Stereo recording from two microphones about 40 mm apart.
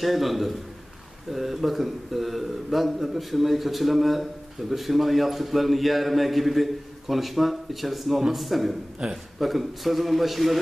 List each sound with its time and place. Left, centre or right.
0.0 s a man's voice: centre
9.0 s a man's voice: centre
9.4 s a man's voice: centre